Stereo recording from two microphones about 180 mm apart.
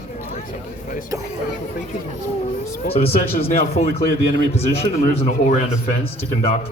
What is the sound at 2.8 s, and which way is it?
Speech, 35° left (ahead or behind).